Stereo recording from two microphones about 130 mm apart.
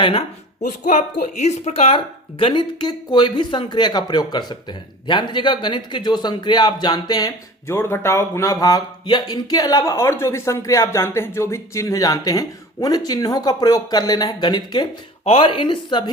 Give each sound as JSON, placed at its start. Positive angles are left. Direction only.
{"t": 0.0, "sound": "speech", "side_deg": 45}
{"t": 0.9, "sound": "a woman's voice", "side_deg": 65}
{"t": 2.4, "sound": "a man's voice", "side_deg": 35}
{"t": 7.8, "sound": "speech", "side_deg": 20}
{"t": 15.2, "sound": "a man's voice", "side_deg": 45}